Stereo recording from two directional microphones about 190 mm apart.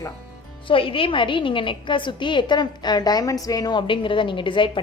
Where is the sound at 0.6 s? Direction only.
25° left (ahead or behind).